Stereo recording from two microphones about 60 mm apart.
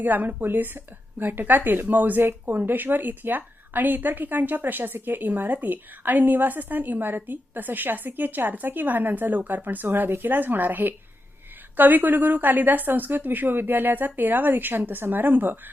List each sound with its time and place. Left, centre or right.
0.0 s speech: right